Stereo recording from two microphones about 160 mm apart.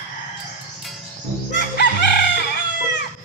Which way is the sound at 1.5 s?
90° left.